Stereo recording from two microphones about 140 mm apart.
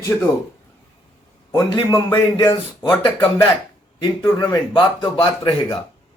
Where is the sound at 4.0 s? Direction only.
30° left (ahead or behind).